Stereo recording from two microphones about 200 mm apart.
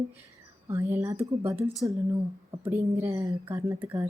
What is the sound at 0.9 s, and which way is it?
Speech, 10° right (ahead or behind).